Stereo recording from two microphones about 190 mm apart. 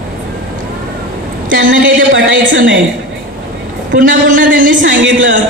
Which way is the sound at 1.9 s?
80° right.